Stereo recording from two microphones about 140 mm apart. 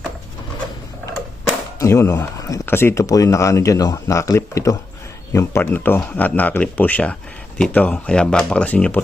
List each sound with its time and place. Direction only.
1.8 s speech: 20° left (ahead or behind)